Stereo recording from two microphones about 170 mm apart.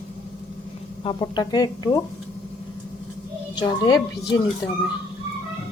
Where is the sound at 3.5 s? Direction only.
25° left (ahead or behind).